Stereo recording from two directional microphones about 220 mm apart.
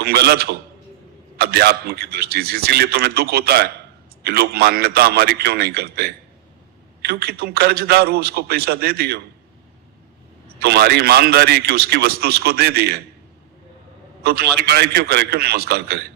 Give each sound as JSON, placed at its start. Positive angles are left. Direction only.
{"t": 0.0, "sound": "a man's voice", "side_deg": -45}
{"t": 10.6, "sound": "a man's voice", "side_deg": -45}
{"t": 14.2, "sound": "a man's voice", "side_deg": -45}